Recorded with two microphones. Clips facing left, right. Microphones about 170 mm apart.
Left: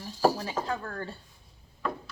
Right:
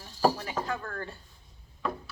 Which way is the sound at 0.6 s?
10° left (ahead or behind).